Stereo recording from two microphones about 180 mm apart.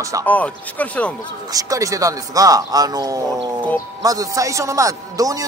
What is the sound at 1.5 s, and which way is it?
A man's voice, 20° right (ahead or behind).